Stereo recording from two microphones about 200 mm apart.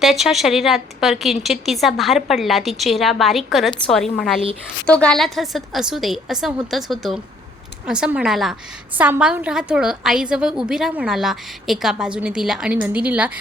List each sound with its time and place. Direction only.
0.0 s a woman's voice: centre (ahead or behind)